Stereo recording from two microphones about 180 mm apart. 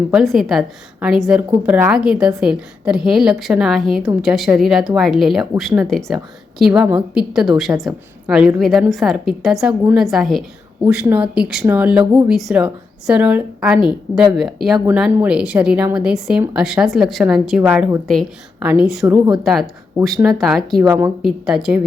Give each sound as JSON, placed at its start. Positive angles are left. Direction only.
{"t": 0.1, "sound": "a woman's voice", "side_deg": 0}
{"t": 18.1, "sound": "a woman's voice", "side_deg": 0}
{"t": 19.1, "sound": "speech", "side_deg": -20}
{"t": 20.2, "sound": "a woman's voice", "side_deg": 0}
{"t": 20.8, "sound": "speech", "side_deg": -10}
{"t": 21.2, "sound": "a woman's voice", "side_deg": 0}